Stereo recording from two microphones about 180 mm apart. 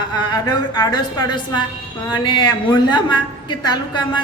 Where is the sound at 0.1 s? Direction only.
20° left (ahead or behind).